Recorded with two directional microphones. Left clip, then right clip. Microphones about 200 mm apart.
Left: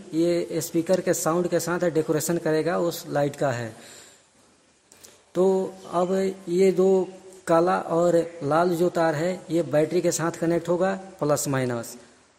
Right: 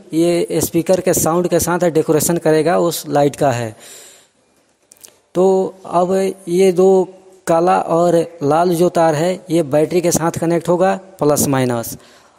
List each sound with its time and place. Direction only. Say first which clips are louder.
0.1 s mantra: right 8 dB; 40° right (ahead or behind)
5.3 s mantra: right 8 dB; 35° right (ahead or behind)